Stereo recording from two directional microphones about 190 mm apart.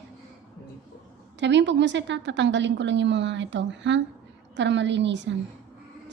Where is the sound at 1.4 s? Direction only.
70° right (ahead or behind).